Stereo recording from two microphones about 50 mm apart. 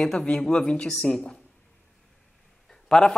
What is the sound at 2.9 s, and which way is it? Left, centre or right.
Speech, centre.